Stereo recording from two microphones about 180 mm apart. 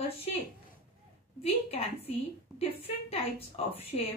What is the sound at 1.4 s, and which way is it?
A woman's voice, 35° left (ahead or behind).